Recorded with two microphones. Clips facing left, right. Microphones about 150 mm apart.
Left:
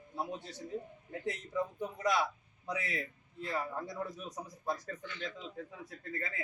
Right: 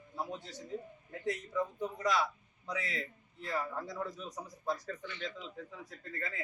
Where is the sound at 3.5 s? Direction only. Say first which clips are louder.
Even; 20° left (ahead or behind).